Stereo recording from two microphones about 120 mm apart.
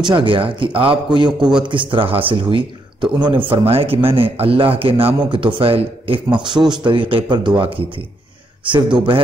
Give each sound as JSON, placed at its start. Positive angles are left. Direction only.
{"t": 0.0, "sound": "speech", "side_deg": -40}